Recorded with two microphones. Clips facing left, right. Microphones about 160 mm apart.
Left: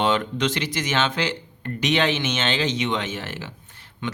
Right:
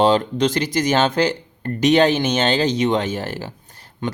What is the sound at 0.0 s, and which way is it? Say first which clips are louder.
Speech: right 6 dB; 35° right (ahead or behind).